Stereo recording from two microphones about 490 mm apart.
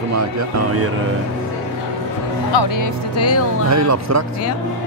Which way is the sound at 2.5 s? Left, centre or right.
Left.